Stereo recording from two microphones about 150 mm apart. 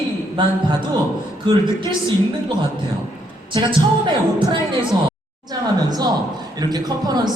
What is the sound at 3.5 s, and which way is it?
A woman's voice, 30° right (ahead or behind).